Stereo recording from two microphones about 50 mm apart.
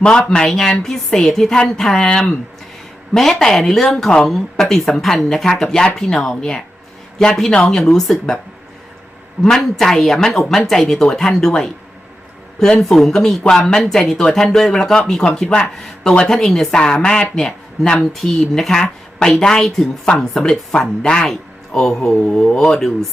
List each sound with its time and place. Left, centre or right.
0.0 s a woman's voice: centre
9.4 s a woman's voice: centre
12.8 s a woman's voice: centre
17.9 s a woman's voice: centre